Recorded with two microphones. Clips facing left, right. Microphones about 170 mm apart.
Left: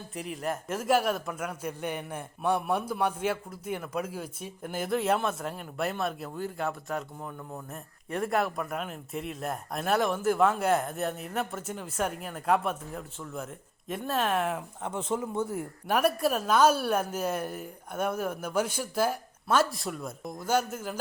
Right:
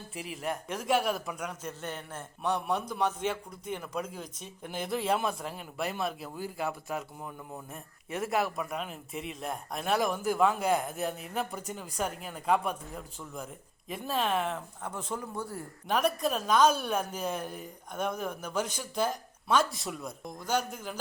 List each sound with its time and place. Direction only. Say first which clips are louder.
0.1 s speech: left 2 dB; 5° right (ahead or behind)
14.8 s speech: left 6 dB; 25° left (ahead or behind)
15.9 s a woman's voice: left 3 dB; 10° left (ahead or behind)